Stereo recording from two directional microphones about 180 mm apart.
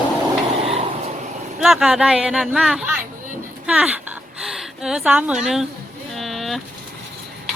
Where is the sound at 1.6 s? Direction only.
5° right (ahead or behind).